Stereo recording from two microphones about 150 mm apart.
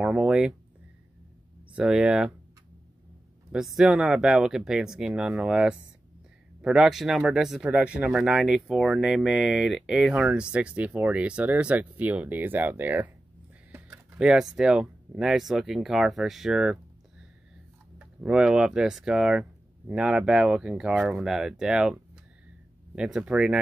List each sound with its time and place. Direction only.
0.0 s speech: 5° right (ahead or behind)
1.7 s speech: 5° right (ahead or behind)
3.5 s speech: centre (ahead or behind)
17.9 s speech: 5° right (ahead or behind)